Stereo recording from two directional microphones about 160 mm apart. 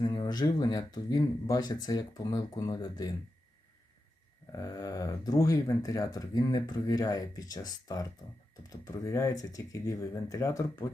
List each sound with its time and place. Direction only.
0.0 s speech: 25° left (ahead or behind)
4.5 s speech: 20° left (ahead or behind)